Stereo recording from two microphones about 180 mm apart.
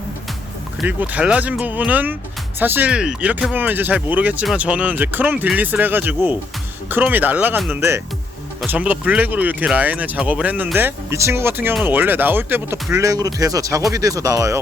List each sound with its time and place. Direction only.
0.8 s speech: 10° right (ahead or behind)